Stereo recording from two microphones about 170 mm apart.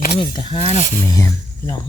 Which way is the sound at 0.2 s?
30° left (ahead or behind).